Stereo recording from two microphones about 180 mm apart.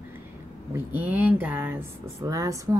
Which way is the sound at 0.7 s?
10° right (ahead or behind).